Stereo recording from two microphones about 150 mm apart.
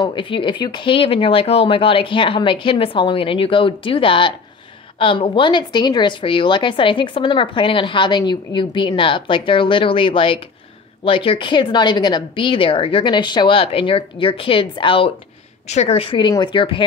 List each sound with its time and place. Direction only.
0.0 s a woman's voice: 35° left (ahead or behind)
15.6 s a woman's voice: 50° left (ahead or behind)